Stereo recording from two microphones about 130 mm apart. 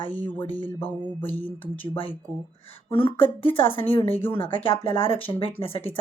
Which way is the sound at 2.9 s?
45° left (ahead or behind).